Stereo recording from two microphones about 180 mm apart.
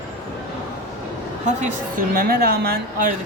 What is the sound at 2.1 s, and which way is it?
Speech, 55° right (ahead or behind).